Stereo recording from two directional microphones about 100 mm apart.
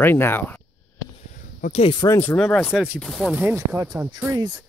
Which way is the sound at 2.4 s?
10° left (ahead or behind).